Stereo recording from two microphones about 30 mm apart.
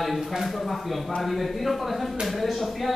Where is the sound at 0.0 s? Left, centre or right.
Centre.